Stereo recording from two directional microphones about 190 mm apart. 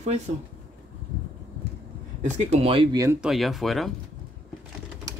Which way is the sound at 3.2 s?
Centre (ahead or behind).